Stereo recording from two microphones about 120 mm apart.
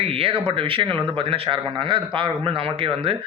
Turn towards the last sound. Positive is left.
turn(degrees=-50)  # may be behind; listen again after turning